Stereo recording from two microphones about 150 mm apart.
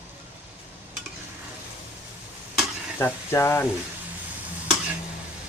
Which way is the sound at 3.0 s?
15° left (ahead or behind).